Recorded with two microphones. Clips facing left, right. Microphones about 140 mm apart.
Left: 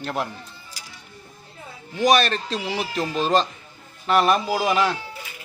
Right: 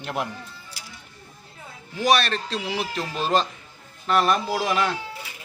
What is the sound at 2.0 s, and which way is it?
A man's voice, centre (ahead or behind).